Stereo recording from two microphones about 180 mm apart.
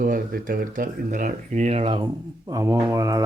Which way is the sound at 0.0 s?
50° right (ahead or behind).